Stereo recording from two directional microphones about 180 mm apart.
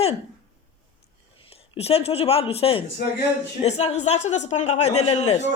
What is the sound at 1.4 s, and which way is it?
Speech, 30° left (ahead or behind).